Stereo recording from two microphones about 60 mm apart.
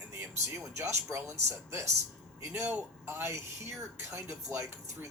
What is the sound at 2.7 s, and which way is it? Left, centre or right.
Speech, right.